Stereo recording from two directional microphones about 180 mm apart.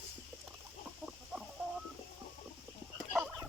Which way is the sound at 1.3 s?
Centre (ahead or behind).